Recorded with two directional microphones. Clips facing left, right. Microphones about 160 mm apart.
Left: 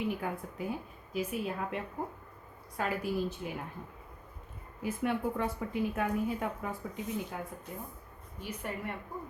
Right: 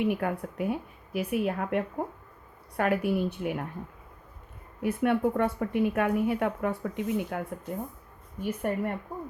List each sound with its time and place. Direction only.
0.0 s speech: 65° right (ahead or behind)
4.8 s speech: 60° right (ahead or behind)
8.4 s speech: 50° right (ahead or behind)